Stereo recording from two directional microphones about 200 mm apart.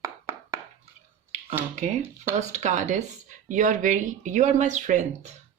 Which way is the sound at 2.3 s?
35° right (ahead or behind).